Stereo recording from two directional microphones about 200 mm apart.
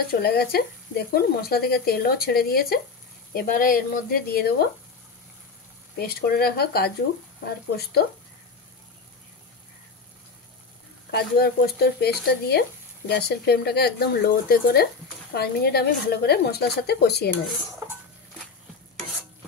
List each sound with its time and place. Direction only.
0.1 s speech: 50° left (ahead or behind)
5.9 s speech: 50° left (ahead or behind)
11.1 s speech: 50° left (ahead or behind)